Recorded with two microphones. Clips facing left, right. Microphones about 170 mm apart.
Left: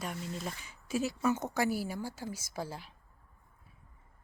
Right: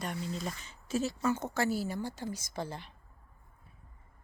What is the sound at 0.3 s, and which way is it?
A woman's voice, 5° left (ahead or behind).